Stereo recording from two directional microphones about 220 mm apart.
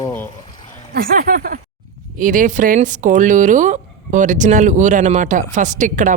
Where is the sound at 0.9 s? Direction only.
40° right (ahead or behind).